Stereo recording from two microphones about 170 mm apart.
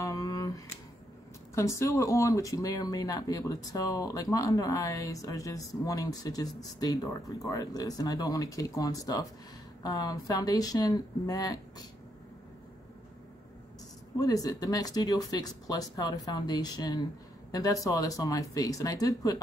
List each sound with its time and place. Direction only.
0.0 s a sound: 20° left (ahead or behind)
1.5 s speech: 15° left (ahead or behind)
14.2 s speech: 20° left (ahead or behind)